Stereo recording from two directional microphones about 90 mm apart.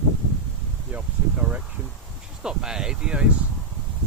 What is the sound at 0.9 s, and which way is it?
Speech, 15° right (ahead or behind).